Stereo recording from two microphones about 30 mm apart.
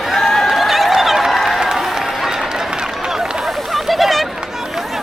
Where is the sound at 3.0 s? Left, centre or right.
Centre.